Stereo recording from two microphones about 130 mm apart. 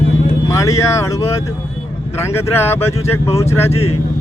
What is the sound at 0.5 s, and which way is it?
Speech, 25° left (ahead or behind).